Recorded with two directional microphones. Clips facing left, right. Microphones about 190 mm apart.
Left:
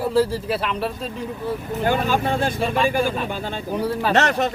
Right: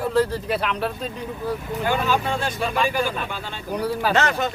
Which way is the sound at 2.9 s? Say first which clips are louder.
Left 3 dB; 50° left (ahead or behind).